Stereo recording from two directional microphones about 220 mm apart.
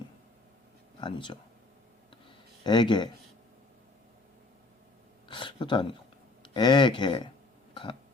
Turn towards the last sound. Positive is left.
turn(degrees=20)  # may be behind; listen again after turning